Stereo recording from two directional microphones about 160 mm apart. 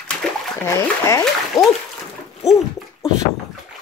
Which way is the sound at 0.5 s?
15° left (ahead or behind).